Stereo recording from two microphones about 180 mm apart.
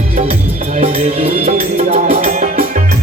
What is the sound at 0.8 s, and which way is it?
Music, 40° right (ahead or behind).